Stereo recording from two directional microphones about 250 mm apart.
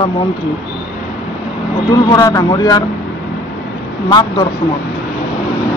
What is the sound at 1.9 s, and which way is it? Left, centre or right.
Speech, centre.